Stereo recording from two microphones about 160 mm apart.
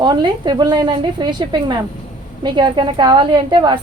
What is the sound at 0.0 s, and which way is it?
A woman's voice, 25° right (ahead or behind).